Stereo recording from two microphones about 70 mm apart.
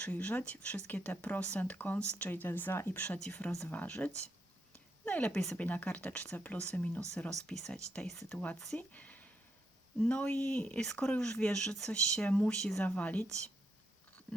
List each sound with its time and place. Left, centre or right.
0.0 s speech: left
5.6 s speech: left
8.9 s a sound: left
10.0 s speech: centre
12.8 s speech: left